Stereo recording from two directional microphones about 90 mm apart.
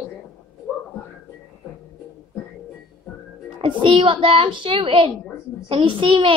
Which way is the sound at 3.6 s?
80° right.